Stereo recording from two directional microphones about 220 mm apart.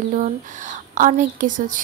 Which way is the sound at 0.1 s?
35° right (ahead or behind).